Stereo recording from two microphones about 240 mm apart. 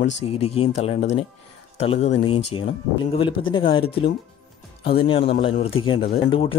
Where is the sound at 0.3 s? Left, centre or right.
Left.